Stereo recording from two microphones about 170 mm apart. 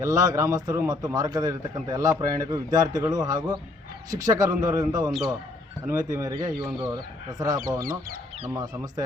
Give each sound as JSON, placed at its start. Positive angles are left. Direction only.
{"t": 0.0, "sound": "a man's voice", "side_deg": -20}
{"t": 7.8, "sound": "speech", "side_deg": -55}
{"t": 8.4, "sound": "a man's voice", "side_deg": -20}